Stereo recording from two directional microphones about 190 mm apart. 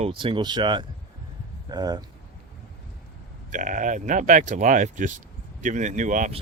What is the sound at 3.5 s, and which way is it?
Speech, 40° right (ahead or behind).